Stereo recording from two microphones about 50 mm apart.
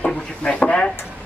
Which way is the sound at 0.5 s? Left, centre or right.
Left.